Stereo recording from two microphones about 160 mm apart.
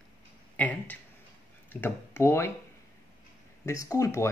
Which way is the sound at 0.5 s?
10° left (ahead or behind).